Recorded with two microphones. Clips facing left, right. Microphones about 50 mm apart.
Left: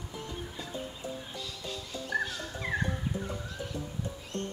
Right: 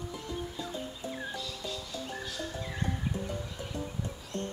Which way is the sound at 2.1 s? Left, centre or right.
Left.